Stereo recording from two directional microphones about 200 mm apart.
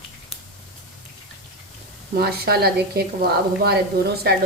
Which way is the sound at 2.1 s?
50° right (ahead or behind).